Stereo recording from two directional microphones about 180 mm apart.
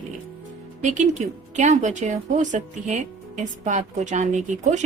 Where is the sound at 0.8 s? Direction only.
40° right (ahead or behind).